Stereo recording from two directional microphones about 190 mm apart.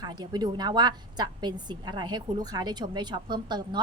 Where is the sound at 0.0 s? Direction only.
20° right (ahead or behind).